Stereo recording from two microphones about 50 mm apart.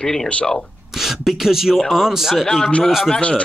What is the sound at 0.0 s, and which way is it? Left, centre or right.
Speech, centre.